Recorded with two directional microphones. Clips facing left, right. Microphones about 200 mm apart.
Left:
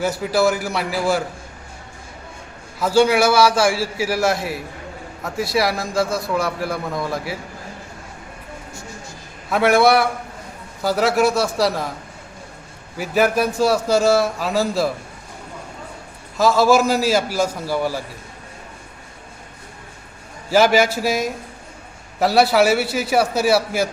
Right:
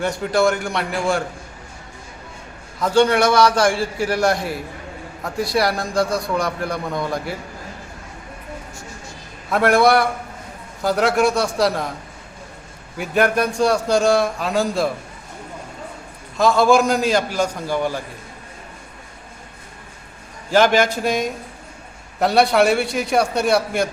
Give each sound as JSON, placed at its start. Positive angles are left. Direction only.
{"t": 0.0, "sound": "a man's voice", "side_deg": 5}
{"t": 2.7, "sound": "a man's voice", "side_deg": 5}
{"t": 9.5, "sound": "a man's voice", "side_deg": 0}
{"t": 13.0, "sound": "a man's voice", "side_deg": 5}
{"t": 16.4, "sound": "a man's voice", "side_deg": 5}
{"t": 20.5, "sound": "a man's voice", "side_deg": 5}